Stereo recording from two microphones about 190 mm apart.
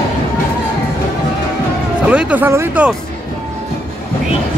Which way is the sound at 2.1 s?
5° right (ahead or behind).